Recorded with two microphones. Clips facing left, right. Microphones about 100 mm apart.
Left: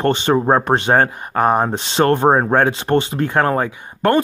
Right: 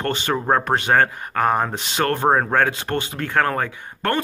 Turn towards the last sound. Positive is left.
turn(degrees=20)  # may be behind; listen again after turning